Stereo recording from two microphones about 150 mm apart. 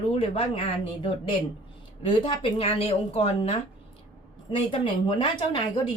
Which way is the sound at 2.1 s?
35° left (ahead or behind).